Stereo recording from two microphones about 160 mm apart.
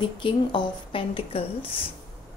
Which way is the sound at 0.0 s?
30° left (ahead or behind).